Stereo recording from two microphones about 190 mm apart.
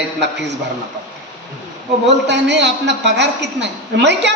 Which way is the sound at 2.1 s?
65° right (ahead or behind).